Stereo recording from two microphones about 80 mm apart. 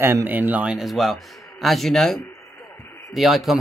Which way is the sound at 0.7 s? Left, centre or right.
Centre.